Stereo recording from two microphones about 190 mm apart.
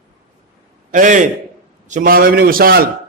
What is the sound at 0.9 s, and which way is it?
A man's voice, 40° right (ahead or behind).